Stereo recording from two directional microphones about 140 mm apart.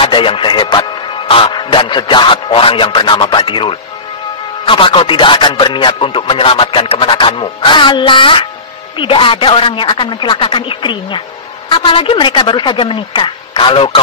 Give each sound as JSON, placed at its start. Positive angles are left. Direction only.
{"t": 0.0, "sound": "speech", "side_deg": 40}